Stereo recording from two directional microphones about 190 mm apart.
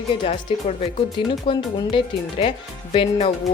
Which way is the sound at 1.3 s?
25° left (ahead or behind).